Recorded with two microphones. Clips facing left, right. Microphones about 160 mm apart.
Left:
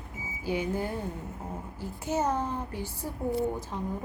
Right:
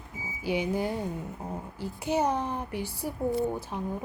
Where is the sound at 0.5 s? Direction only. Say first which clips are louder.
Right 2 dB; 15° right (ahead or behind).